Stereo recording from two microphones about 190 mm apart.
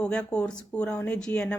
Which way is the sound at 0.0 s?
5° left (ahead or behind).